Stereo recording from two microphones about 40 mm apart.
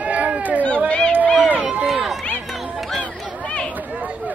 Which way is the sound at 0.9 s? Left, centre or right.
Left.